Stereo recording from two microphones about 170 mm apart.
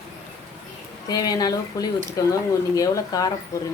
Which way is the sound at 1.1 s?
25° left (ahead or behind).